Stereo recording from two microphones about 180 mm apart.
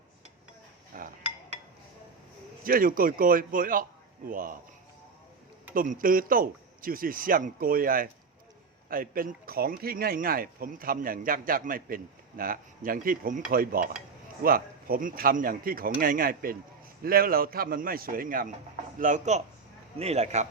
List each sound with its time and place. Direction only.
0.9 s dishes: 50° right (ahead or behind)
2.6 s speech: 50° right (ahead or behind)
5.7 s a man's voice: 50° right (ahead or behind)